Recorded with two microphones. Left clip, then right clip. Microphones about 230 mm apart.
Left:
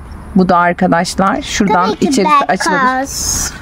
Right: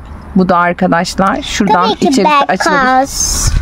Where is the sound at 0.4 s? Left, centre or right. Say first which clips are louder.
Even; centre.